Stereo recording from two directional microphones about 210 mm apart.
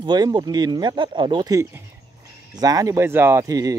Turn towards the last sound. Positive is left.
turn(degrees=-15)  # may be behind; listen again after turning